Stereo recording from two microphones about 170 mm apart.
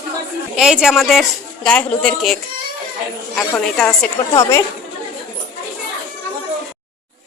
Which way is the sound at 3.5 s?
5° left (ahead or behind).